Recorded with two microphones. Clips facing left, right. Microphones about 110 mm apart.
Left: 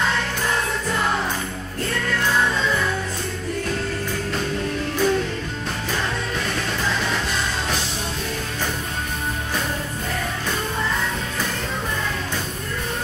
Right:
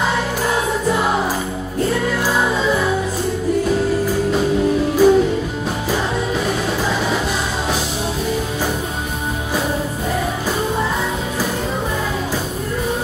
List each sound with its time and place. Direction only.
0.0 s music: 10° right (ahead or behind)